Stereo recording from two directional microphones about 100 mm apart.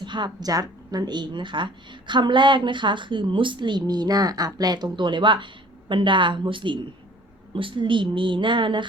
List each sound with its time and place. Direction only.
0.0 s a woman's voice: 50° right (ahead or behind)